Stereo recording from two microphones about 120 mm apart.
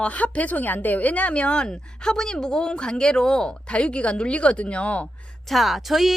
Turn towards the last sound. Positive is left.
turn(degrees=0)  # may be behind; listen again after turning